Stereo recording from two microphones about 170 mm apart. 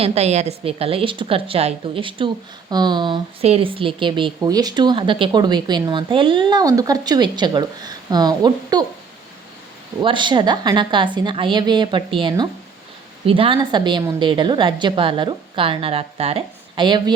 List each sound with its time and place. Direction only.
0.0 s a woman's voice: 40° right (ahead or behind)
10.0 s speech: 30° right (ahead or behind)